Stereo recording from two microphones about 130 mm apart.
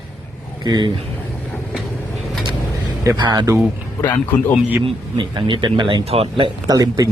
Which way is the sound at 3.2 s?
35° right (ahead or behind).